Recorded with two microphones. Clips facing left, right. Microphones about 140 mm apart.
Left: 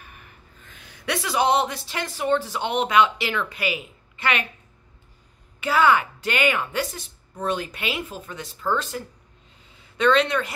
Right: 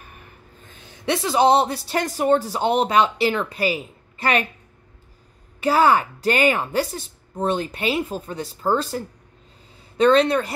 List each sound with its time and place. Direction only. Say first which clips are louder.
0.7 s speech: right 5 dB; 30° right (ahead or behind)
5.6 s speech: right 2 dB; 35° right (ahead or behind)
7.3 s speech: right 4 dB; 25° right (ahead or behind)